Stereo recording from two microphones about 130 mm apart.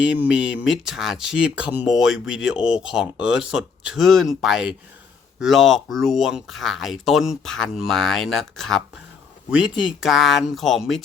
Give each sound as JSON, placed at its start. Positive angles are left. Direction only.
{"t": 0.0, "sound": "speech", "side_deg": -10}